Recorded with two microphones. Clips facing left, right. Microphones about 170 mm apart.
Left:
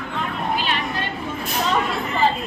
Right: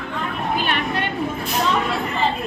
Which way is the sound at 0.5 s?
55° right (ahead or behind).